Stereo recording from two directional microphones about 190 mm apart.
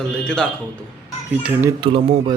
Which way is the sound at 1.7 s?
25° right (ahead or behind).